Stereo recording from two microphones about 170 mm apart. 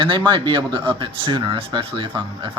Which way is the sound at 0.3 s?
30° right (ahead or behind).